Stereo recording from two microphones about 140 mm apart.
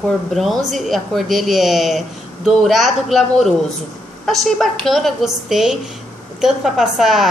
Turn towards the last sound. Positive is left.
turn(degrees=0)  # may be behind; listen again after turning